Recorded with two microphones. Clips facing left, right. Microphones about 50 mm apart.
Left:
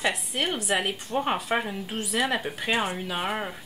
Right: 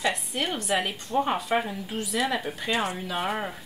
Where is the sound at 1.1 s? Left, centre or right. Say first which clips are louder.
Right 2 dB; left.